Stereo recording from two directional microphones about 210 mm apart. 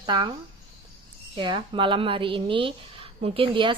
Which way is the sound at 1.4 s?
25° right (ahead or behind).